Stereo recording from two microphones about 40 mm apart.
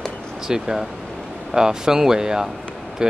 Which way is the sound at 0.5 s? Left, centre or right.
Centre.